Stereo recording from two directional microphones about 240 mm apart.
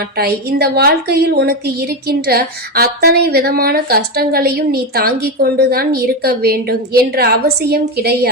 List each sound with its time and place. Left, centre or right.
0.0 s a woman's voice: right